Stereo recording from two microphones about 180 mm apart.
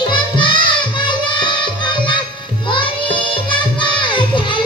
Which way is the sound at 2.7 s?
30° left (ahead or behind).